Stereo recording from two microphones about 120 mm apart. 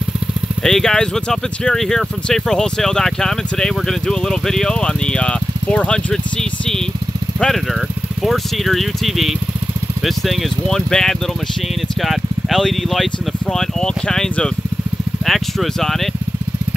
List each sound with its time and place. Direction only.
0.7 s speech: 5° left (ahead or behind)